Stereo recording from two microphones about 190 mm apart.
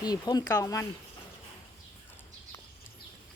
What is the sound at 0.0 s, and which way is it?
Speech, 20° left (ahead or behind).